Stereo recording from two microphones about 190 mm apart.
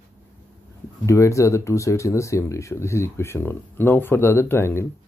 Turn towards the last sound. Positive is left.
turn(degrees=15)  # may be behind; listen again after turning